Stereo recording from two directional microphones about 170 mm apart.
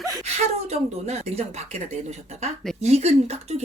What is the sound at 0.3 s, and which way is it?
Speech, 40° right (ahead or behind).